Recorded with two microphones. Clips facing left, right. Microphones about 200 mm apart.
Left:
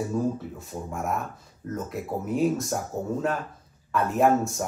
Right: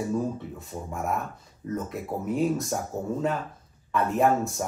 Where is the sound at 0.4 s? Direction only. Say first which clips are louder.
Left 1 dB; centre (ahead or behind).